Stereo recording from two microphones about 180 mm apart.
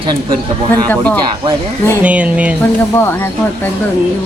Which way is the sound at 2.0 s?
5° right (ahead or behind).